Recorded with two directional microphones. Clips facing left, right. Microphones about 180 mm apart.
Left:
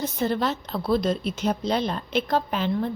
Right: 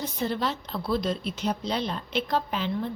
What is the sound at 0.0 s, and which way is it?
A woman's voice, 50° left (ahead or behind).